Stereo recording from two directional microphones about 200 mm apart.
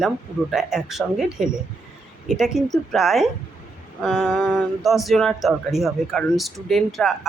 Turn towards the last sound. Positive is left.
turn(degrees=0)  # may be behind; listen again after turning